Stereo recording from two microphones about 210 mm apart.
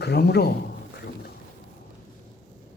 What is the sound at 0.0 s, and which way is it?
Speech, 50° left (ahead or behind).